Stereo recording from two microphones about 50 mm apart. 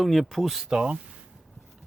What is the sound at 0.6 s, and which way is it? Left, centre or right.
Speech, centre.